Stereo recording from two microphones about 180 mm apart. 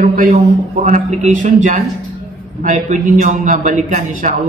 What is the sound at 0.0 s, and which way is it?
A man's voice, 50° right (ahead or behind).